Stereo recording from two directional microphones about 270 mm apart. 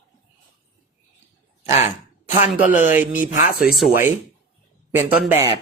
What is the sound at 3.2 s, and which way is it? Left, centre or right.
Speech, left.